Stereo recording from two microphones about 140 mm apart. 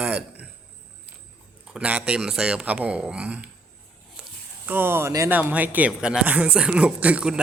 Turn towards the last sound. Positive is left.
turn(degrees=-10)  # may be behind; listen again after turning